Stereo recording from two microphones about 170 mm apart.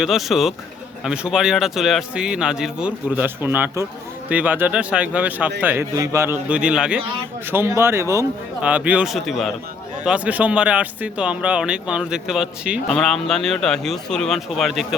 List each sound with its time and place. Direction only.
0.0 s a man's voice: centre (ahead or behind)